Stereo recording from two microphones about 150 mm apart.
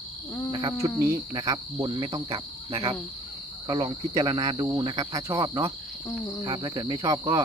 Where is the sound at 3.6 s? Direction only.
30° right (ahead or behind).